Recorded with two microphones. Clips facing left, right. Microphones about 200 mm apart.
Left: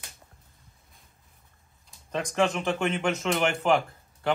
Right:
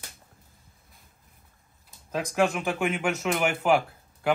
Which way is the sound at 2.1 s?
5° right (ahead or behind).